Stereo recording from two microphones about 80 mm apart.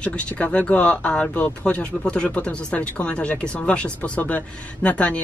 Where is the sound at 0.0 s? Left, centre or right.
Centre.